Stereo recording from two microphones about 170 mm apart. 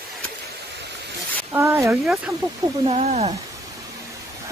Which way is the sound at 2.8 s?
40° right (ahead or behind).